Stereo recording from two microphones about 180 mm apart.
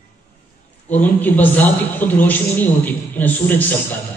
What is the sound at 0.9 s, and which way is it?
A man's voice, 10° left (ahead or behind).